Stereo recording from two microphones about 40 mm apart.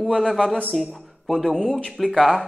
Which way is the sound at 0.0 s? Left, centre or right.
Centre.